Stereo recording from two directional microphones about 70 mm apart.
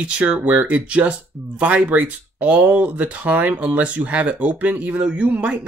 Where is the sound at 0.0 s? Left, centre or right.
Centre.